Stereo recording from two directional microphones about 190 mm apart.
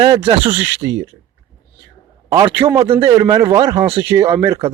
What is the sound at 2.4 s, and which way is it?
Speech, 30° right (ahead or behind).